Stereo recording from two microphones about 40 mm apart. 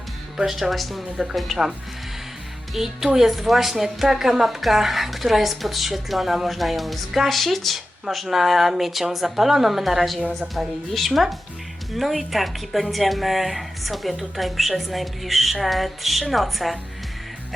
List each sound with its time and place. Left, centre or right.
0.3 s a woman's voice: centre
1.1 s a woman's voice: centre
2.7 s a woman's voice: centre